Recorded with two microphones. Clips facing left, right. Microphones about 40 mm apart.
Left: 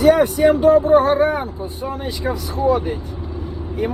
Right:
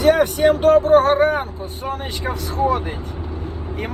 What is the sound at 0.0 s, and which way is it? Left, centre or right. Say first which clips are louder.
Speech: left 2 dB; right.